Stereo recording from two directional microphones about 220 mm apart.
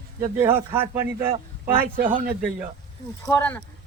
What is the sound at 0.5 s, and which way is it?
Speech, 10° right (ahead or behind).